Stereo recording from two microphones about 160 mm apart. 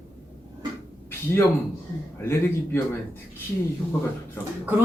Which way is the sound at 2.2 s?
15° left (ahead or behind).